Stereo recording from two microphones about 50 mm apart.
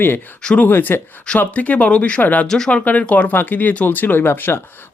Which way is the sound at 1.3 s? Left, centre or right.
Left.